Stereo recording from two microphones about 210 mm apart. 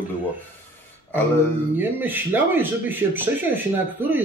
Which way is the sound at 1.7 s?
10° right (ahead or behind).